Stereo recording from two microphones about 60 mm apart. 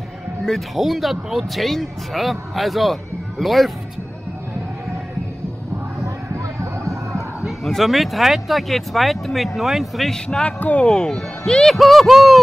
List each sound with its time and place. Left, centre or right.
0.5 s speech: centre
7.1 s speech: centre
10.2 s speech: centre
10.9 s speech: centre
11.6 s speech: centre